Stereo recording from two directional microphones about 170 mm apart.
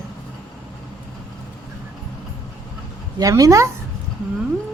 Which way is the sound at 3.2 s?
20° right (ahead or behind).